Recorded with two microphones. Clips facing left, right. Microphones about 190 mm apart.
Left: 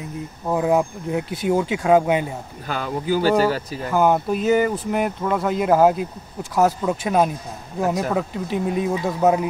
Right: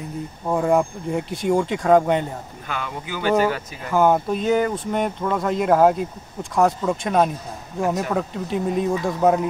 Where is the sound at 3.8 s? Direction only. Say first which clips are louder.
Even; centre (ahead or behind).